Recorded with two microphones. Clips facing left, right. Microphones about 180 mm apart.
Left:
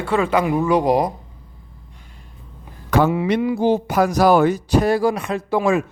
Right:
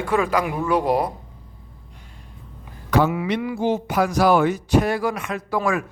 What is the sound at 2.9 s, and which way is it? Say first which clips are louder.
Speech: left 2 dB; 50° left (ahead or behind).